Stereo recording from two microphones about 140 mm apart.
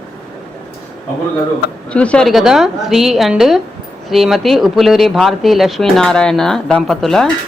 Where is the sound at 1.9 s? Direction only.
10° left (ahead or behind).